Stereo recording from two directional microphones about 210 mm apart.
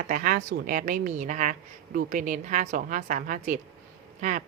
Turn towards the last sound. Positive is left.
turn(degrees=-35)  # may be behind; listen again after turning